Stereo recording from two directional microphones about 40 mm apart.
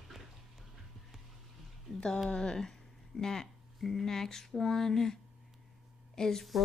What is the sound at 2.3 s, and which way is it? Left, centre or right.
Speech, centre.